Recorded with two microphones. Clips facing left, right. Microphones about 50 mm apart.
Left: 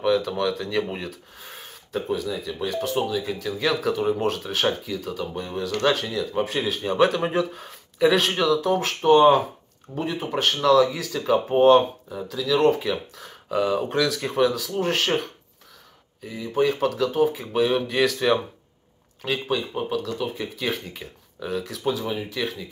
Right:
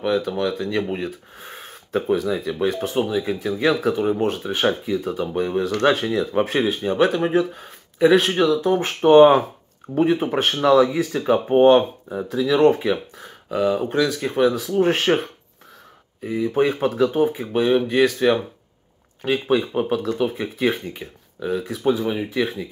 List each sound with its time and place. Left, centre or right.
0.0 s speech: centre
1.3 s speech: right
4.9 s speech: right
6.8 s speech: centre
9.0 s speech: right; by 11.8 s centre
12.1 s speech: right
13.5 s speech: centre
19.5 s speech: right
20.9 s speech: centre